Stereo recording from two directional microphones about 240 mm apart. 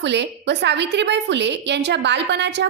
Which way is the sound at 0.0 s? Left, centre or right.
Right.